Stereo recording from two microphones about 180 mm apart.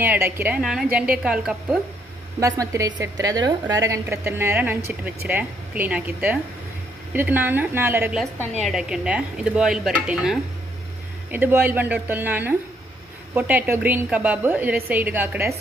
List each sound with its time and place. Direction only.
0.0 s a woman's voice: 10° right (ahead or behind)
2.4 s a woman's voice: 15° right (ahead or behind)